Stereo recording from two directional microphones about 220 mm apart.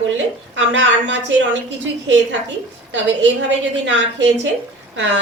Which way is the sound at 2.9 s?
55° right (ahead or behind).